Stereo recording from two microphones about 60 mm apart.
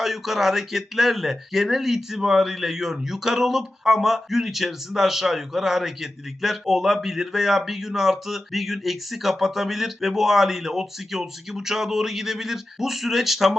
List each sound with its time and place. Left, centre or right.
0.0 s speech: centre